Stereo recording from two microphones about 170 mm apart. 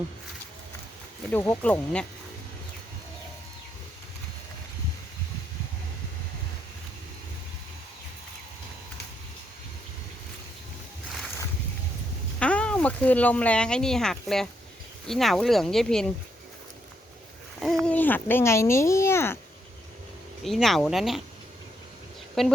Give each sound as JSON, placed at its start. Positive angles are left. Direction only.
{"t": 1.3, "sound": "speech", "side_deg": 10}
{"t": 12.4, "sound": "speech", "side_deg": 5}
{"t": 17.6, "sound": "speech", "side_deg": 0}
{"t": 20.4, "sound": "speech", "side_deg": 0}
{"t": 22.4, "sound": "speech", "side_deg": 0}